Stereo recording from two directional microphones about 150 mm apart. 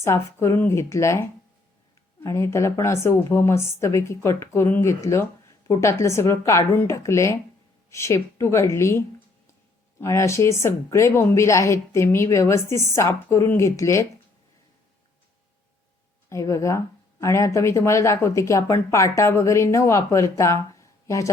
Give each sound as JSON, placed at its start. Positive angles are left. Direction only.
{"t": 0.0, "sound": "speech", "side_deg": 20}
{"t": 16.3, "sound": "speech", "side_deg": 20}